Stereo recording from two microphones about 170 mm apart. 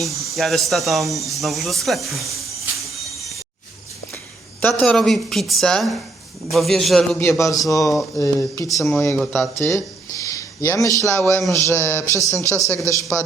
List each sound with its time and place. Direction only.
0.0 s speech: centre (ahead or behind)
4.6 s speech: 5° left (ahead or behind)
7.2 s speech: 15° left (ahead or behind)